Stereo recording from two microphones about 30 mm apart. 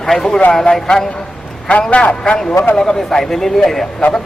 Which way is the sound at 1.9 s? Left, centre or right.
Left.